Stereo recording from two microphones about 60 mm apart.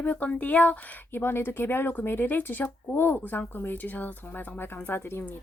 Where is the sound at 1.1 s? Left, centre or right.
Left.